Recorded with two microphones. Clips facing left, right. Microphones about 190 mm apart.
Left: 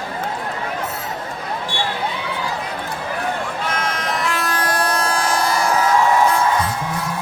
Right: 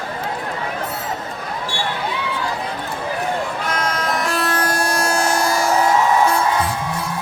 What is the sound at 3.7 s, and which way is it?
Vehicle, 35° right (ahead or behind).